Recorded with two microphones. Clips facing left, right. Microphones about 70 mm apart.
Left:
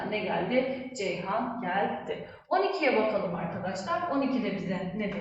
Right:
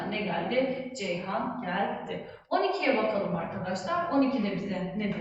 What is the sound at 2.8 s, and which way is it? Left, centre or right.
A woman's voice, centre.